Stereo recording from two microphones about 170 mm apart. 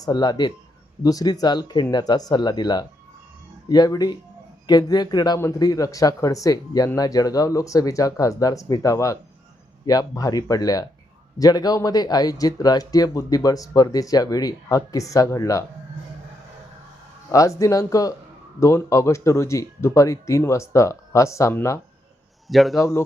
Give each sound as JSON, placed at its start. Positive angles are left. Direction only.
{"t": 0.0, "sound": "speech", "side_deg": 25}
{"t": 17.3, "sound": "speech", "side_deg": 20}
{"t": 22.4, "sound": "a man's voice", "side_deg": 0}
{"t": 22.8, "sound": "speech", "side_deg": 15}